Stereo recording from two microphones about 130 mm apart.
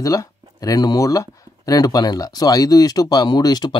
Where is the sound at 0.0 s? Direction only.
25° left (ahead or behind).